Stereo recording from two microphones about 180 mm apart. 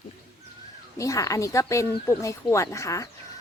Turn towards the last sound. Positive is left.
turn(degrees=15)  # may be behind; listen again after turning